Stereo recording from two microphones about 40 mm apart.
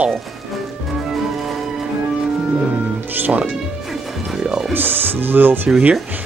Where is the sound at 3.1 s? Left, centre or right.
Right.